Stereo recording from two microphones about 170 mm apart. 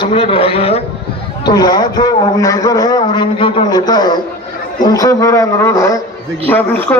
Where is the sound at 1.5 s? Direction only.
25° left (ahead or behind).